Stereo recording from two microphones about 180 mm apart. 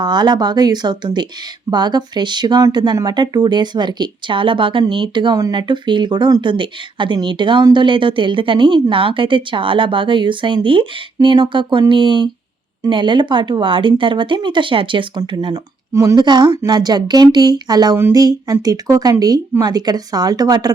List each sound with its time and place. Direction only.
0.0 s speech: 25° right (ahead or behind)